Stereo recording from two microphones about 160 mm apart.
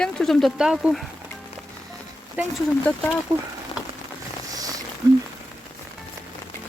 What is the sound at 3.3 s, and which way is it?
Speech, 15° right (ahead or behind).